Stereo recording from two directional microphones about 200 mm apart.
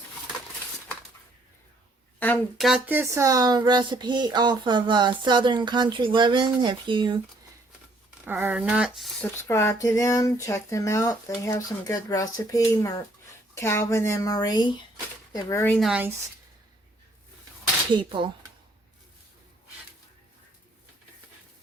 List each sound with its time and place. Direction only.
2.1 s speech: 10° left (ahead or behind); by 7.2 s 25° right (ahead or behind)
8.2 s speech: 10° right (ahead or behind)
9.4 s speech: 15° left (ahead or behind)
15.7 s speech: centre (ahead or behind)
17.9 s speech: 25° right (ahead or behind)